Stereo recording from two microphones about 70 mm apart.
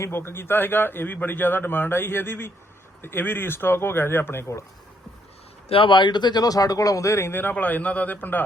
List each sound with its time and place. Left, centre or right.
0.0 s a man's voice: left
6.0 s speech: left
7.5 s a man's voice: left